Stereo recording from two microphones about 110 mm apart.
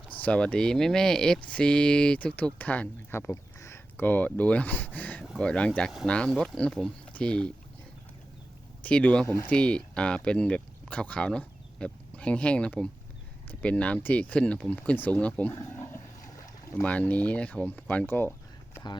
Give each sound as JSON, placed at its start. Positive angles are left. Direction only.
{"t": 0.1, "sound": "speech", "side_deg": 15}
{"t": 8.8, "sound": "speech", "side_deg": 15}
{"t": 15.7, "sound": "dog", "side_deg": 20}
{"t": 16.8, "sound": "speech", "side_deg": 10}